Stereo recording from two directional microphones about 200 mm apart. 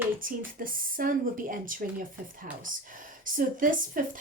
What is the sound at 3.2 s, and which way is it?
Speech, 40° right (ahead or behind).